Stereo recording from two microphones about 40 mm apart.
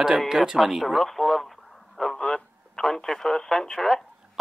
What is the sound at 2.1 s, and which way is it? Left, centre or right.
Radio, centre.